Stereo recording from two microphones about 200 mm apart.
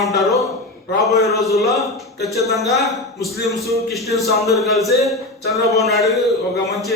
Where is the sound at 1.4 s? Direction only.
Centre (ahead or behind).